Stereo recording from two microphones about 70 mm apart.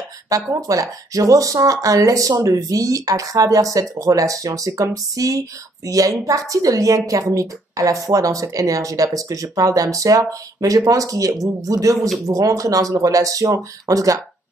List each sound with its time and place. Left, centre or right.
0.5 s speech: right